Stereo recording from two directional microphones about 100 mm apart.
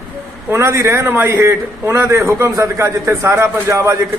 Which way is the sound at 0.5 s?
30° right (ahead or behind).